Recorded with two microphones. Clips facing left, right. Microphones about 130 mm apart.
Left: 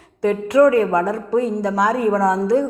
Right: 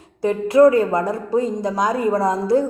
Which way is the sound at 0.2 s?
30° right (ahead or behind).